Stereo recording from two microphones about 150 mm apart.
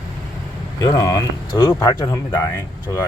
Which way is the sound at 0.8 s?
25° left (ahead or behind).